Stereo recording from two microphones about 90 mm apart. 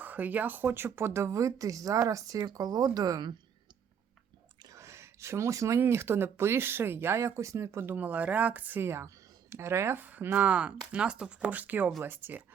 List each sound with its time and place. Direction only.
0.0 s speech: 20° right (ahead or behind); by 3.2 s 40° right (ahead or behind)
4.7 s speech: 35° right (ahead or behind)